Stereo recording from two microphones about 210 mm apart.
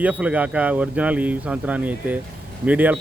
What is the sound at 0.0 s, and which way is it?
Speech, 5° right (ahead or behind).